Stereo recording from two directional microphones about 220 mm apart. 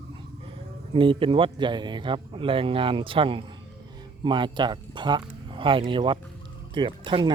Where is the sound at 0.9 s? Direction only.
25° right (ahead or behind).